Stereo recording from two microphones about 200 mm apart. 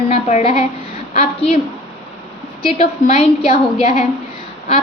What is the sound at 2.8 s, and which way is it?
A woman's voice, 35° left (ahead or behind).